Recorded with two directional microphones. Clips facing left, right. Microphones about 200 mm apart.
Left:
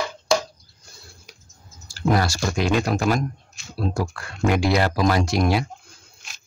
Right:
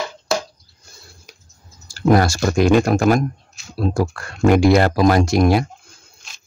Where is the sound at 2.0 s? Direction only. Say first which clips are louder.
Right 6 dB; 50° right (ahead or behind).